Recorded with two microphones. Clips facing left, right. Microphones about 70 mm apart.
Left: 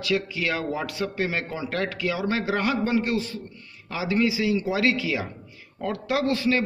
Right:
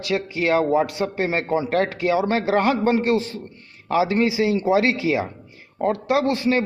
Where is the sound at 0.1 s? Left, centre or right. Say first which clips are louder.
Right 6 dB; right.